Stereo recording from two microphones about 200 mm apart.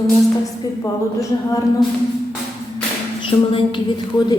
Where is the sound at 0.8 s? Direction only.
15° left (ahead or behind).